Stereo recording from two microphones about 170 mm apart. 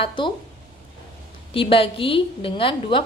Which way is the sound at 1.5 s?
30° left (ahead or behind).